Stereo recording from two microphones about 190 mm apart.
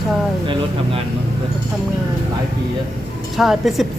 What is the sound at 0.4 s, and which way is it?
Speech, 25° right (ahead or behind).